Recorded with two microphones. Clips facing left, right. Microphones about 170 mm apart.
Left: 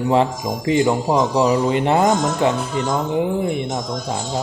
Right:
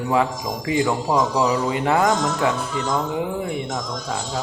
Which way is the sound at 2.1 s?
50° left (ahead or behind).